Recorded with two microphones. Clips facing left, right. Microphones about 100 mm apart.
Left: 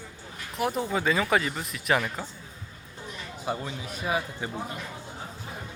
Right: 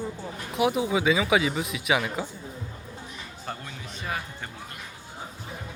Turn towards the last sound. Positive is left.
turn(degrees=10)  # may be behind; listen again after turning